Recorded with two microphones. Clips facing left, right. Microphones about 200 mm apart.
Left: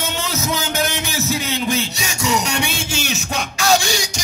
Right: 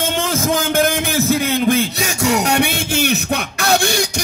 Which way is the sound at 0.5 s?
50° right (ahead or behind).